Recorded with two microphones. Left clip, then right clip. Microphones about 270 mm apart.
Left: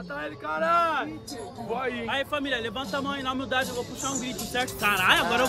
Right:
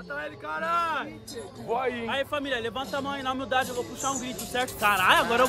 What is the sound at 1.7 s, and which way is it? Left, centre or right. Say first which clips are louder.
Speech: right 2 dB; right.